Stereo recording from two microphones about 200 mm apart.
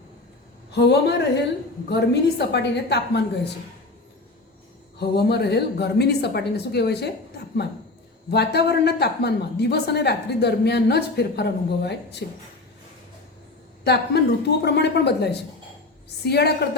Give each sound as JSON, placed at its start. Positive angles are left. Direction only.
{"t": 0.7, "sound": "a man's voice", "side_deg": 55}
{"t": 4.9, "sound": "a woman's voice", "side_deg": 55}
{"t": 13.8, "sound": "a woman's voice", "side_deg": 55}